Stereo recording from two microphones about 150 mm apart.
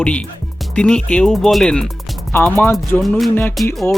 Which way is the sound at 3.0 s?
Centre (ahead or behind).